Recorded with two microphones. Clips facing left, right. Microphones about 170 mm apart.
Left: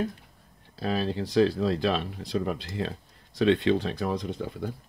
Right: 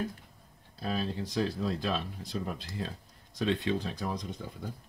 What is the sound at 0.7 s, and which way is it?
Speech, 80° left.